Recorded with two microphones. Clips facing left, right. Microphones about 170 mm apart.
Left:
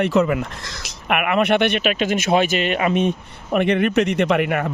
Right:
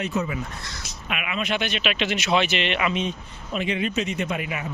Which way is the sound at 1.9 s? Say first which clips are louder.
Left 5 dB; 45° left (ahead or behind).